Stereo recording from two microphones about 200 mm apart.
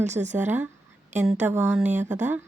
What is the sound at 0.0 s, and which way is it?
Speech, 35° right (ahead or behind).